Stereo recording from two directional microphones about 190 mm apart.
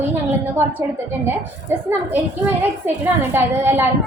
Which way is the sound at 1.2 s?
10° right (ahead or behind).